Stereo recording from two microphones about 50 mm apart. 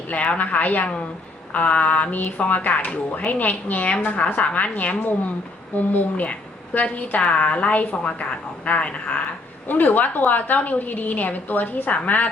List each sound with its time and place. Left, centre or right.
0.1 s a woman's voice: left